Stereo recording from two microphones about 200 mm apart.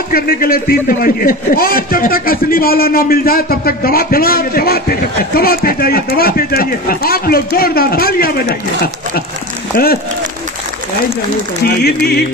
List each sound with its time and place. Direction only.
0.1 s a man's voice: 50° left (ahead or behind)
11.6 s speech: 55° left (ahead or behind)